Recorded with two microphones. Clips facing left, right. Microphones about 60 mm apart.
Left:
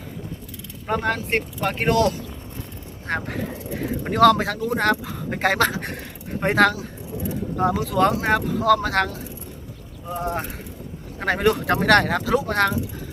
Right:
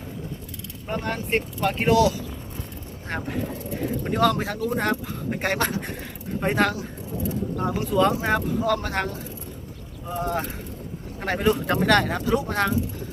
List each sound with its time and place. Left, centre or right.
0.9 s speech: left
1.4 s speech: left
3.2 s speech: left
4.1 s speech: left
4.7 s speech: left
8.4 s speech: left
10.2 s speech: left
11.3 s speech: left
12.5 s speech: left